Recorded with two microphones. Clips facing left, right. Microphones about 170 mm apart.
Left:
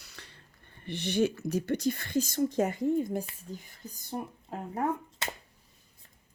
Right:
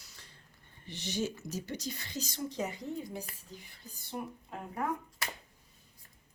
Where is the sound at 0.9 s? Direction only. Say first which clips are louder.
Left 8 dB; 60° left (ahead or behind); by 4.9 s 40° left (ahead or behind).